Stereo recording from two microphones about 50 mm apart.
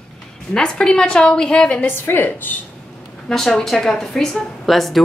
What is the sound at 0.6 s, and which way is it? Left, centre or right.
A woman's voice, centre.